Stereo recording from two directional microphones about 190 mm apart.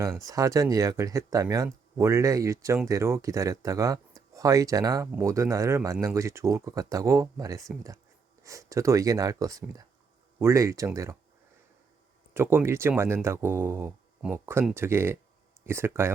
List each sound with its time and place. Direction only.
0.3 s speech: 15° right (ahead or behind)
12.3 s speech: 10° right (ahead or behind)